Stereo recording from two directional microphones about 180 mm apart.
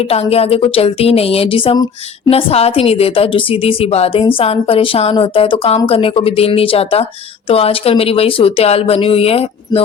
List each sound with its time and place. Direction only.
0.0 s a woman's voice: 35° left (ahead or behind)
2.3 s a woman's voice: 35° left (ahead or behind)